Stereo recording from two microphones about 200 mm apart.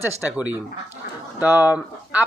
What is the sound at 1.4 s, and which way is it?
Speech, 10° right (ahead or behind).